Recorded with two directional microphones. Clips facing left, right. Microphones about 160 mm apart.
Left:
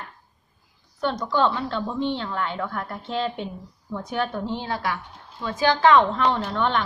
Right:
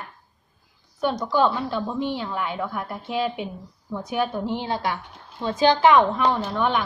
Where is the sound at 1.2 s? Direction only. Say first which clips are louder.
Right 1 dB; 10° right (ahead or behind).